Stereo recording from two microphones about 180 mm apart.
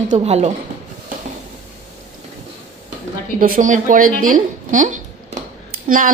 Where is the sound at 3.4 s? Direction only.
50° right (ahead or behind).